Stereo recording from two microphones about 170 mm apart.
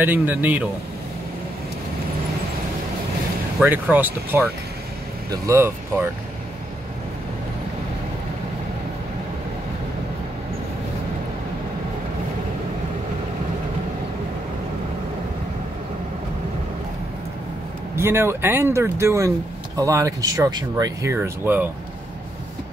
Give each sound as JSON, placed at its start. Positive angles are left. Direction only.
{"t": 0.0, "sound": "speech", "side_deg": -10}
{"t": 3.6, "sound": "speech", "side_deg": -10}
{"t": 17.9, "sound": "speech", "side_deg": -15}